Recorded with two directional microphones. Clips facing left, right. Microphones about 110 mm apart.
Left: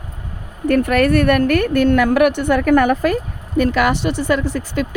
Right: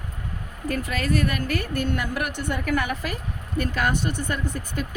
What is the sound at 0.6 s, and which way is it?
Speech, 60° left (ahead or behind).